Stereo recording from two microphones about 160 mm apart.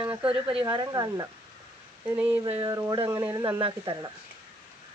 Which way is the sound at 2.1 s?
10° right (ahead or behind).